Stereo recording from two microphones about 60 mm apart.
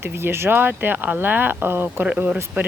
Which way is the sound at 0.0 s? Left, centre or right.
Right.